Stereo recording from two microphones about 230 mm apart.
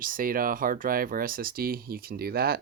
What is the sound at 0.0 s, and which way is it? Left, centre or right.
Speech, right.